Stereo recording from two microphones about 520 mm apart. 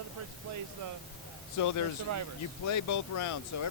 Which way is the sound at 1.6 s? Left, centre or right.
Left.